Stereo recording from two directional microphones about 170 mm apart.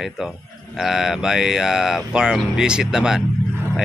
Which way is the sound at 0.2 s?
5° right (ahead or behind).